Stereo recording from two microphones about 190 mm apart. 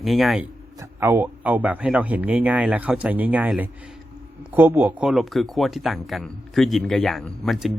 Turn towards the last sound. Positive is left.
turn(degrees=0)  # may be behind; listen again after turning